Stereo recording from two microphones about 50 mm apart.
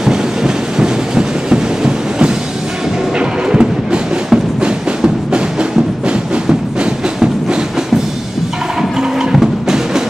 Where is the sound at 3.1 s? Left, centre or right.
Centre.